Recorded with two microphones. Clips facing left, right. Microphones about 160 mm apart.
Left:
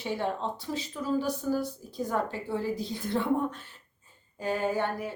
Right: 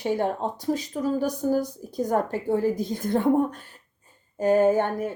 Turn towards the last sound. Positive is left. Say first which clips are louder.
# right 9 dB
turn(degrees=-45)  # may be behind; listen again after turning